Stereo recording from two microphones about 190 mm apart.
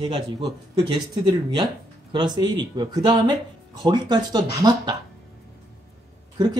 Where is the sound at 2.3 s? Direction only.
20° right (ahead or behind).